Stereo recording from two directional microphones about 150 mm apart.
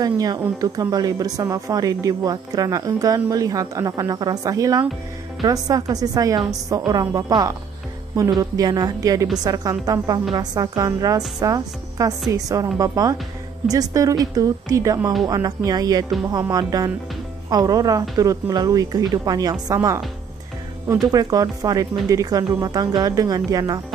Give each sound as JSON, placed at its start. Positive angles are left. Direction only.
{"t": 0.0, "sound": "speech", "side_deg": -25}
{"t": 21.1, "sound": "speech", "side_deg": -25}